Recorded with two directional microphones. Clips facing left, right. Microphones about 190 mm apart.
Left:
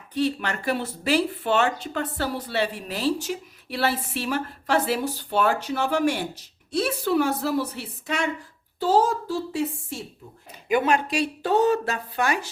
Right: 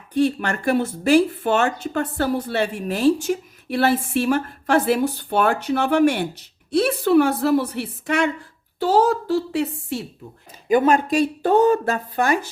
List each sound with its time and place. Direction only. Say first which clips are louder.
0.1 s a woman's voice: right 5 dB; 50° right (ahead or behind); by 10.1 s 65° right (ahead or behind)
10.7 s speech: right 5 dB; 45° right (ahead or behind)